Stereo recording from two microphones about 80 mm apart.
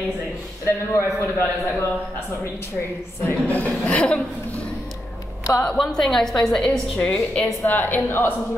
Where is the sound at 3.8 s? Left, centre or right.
Centre.